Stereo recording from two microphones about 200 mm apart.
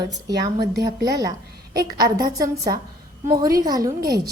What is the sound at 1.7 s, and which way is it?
A woman's voice, 20° right (ahead or behind).